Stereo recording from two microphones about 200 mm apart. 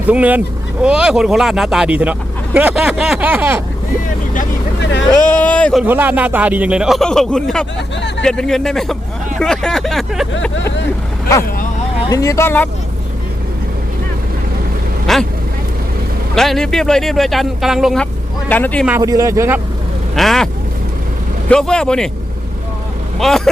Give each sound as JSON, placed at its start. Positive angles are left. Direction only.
{"t": 0.1, "sound": "speech", "side_deg": -5}
{"t": 4.8, "sound": "vehicle", "side_deg": 65}
{"t": 5.3, "sound": "speech", "side_deg": 5}
{"t": 5.8, "sound": "speech", "side_deg": -10}
{"t": 12.0, "sound": "speech", "side_deg": 15}
{"t": 15.0, "sound": "vehicle", "side_deg": 0}
{"t": 16.3, "sound": "speech", "side_deg": 0}
{"t": 18.9, "sound": "speech", "side_deg": -15}
{"t": 20.1, "sound": "speech", "side_deg": 0}
{"t": 21.5, "sound": "speech", "side_deg": 5}
{"t": 23.2, "sound": "speech", "side_deg": 0}